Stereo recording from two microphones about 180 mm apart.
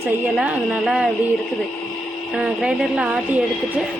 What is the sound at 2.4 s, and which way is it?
Speech, 5° right (ahead or behind).